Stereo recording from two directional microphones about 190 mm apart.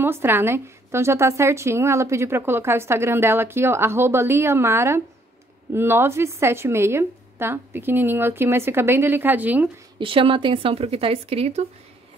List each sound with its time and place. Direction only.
0.0 s a woman's voice: 10° right (ahead or behind)
9.9 s speech: 25° right (ahead or behind)